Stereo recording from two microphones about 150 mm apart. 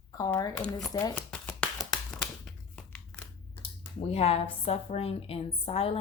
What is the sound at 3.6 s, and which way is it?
Speech, 40° left (ahead or behind).